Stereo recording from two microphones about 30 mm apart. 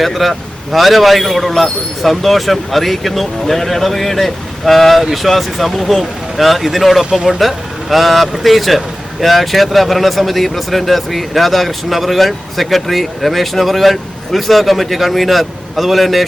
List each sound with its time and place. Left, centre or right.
0.0 s speech: centre
7.0 s speech: right
7.3 s speech: centre